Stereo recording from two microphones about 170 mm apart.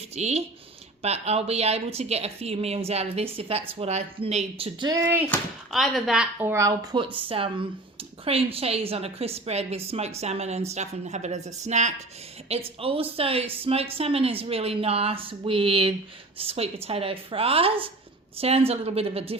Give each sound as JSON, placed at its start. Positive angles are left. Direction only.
{"t": 0.2, "sound": "speech", "side_deg": -40}
{"t": 5.0, "sound": "speech", "side_deg": -10}
{"t": 6.5, "sound": "a woman's voice", "side_deg": -20}